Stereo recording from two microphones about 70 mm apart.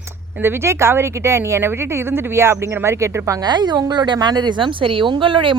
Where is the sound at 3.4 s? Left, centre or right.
Right.